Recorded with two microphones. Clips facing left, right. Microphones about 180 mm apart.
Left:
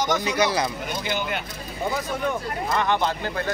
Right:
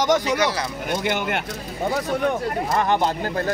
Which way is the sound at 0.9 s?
75° right (ahead or behind).